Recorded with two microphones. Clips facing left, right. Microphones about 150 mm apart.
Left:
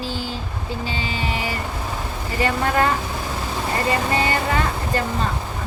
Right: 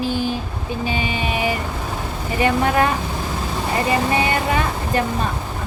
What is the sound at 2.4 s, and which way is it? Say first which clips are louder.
Speech: right 3 dB; 20° right (ahead or behind).